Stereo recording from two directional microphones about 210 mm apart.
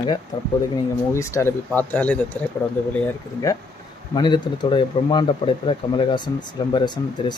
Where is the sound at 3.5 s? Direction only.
15° left (ahead or behind).